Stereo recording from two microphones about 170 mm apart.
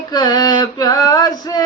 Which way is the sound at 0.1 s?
25° left (ahead or behind).